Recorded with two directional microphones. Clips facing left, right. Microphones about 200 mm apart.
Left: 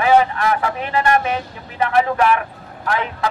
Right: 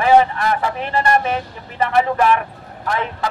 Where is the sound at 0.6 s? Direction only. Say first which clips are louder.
Even; centre (ahead or behind).